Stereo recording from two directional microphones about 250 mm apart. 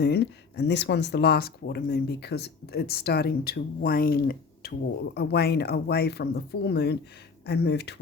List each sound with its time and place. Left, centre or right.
0.0 s speech: left